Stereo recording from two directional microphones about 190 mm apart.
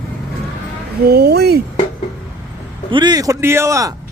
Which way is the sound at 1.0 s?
60° right (ahead or behind).